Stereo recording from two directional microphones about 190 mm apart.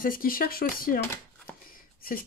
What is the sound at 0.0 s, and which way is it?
Speech, 50° left (ahead or behind).